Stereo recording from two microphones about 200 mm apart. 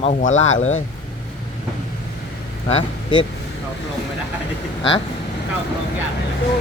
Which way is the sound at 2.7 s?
25° left (ahead or behind).